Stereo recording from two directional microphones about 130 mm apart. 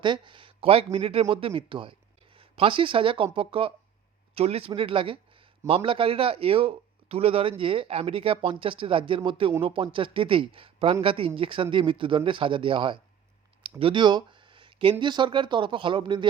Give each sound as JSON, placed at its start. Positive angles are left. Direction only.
{"t": 0.0, "sound": "speech", "side_deg": -40}